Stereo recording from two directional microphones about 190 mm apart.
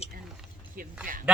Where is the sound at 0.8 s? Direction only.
50° right (ahead or behind).